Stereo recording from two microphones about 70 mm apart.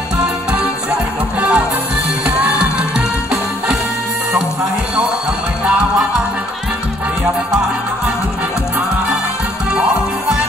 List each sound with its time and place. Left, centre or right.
1.4 s music: right